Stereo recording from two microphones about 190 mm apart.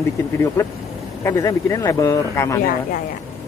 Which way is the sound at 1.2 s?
15° left (ahead or behind).